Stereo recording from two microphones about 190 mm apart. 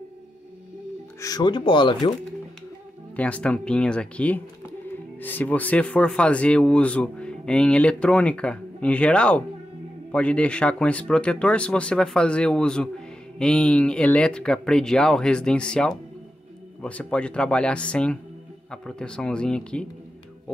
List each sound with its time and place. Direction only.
1.2 s speech: 20° left (ahead or behind)
3.2 s speech: 5° left (ahead or behind)